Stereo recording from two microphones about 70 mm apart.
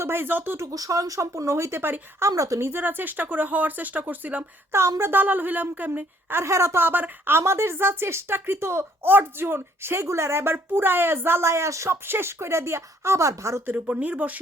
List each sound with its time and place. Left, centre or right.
0.0 s a woman's voice: right
0.6 s speech: right
2.3 s speech: right
2.8 s a woman's voice: right
4.7 s a woman's voice: right
6.4 s a woman's voice: right
13.7 s a woman's voice: right